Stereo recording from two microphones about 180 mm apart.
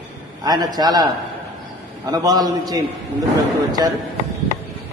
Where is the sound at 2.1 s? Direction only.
20° right (ahead or behind).